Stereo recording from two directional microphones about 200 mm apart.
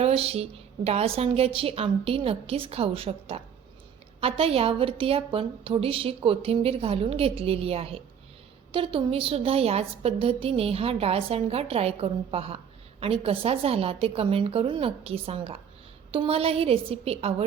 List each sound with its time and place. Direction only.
0.0 s a woman's voice: 30° right (ahead or behind)